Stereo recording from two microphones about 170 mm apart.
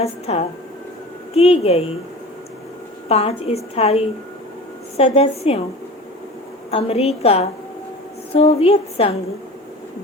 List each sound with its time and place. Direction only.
0.0 s a woman's voice: 40° left (ahead or behind)
3.1 s a woman's voice: 35° left (ahead or behind)
6.7 s a woman's voice: 35° left (ahead or behind)